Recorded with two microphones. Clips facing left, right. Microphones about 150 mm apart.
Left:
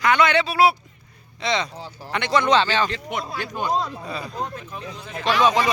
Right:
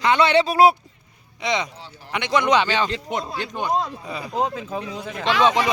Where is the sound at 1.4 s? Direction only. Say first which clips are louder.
Even; 15° right (ahead or behind).